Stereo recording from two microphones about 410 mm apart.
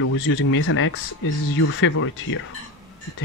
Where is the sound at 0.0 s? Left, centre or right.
Left.